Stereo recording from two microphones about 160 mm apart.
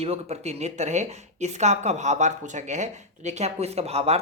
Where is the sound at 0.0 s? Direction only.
40° right (ahead or behind).